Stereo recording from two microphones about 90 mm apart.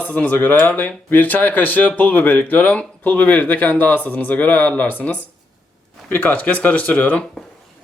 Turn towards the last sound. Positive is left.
turn(degrees=15)  # may be behind; listen again after turning